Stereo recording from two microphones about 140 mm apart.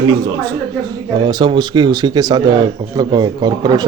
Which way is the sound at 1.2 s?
30° right (ahead or behind).